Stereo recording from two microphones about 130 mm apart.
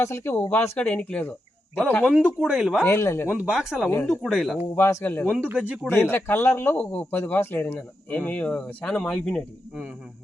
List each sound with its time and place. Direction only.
0.0 s speech: 20° left (ahead or behind)
2.0 s speech: 5° right (ahead or behind)
2.8 s speech: 20° left (ahead or behind)
3.2 s speech: 5° right (ahead or behind)
4.8 s speech: 20° left (ahead or behind)
5.3 s speech: 10° right (ahead or behind)
6.1 s speech: 15° left (ahead or behind)